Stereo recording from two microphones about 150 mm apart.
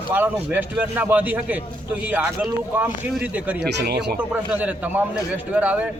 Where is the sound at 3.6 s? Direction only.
90° right.